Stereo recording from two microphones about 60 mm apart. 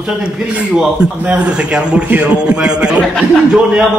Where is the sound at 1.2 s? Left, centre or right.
Centre.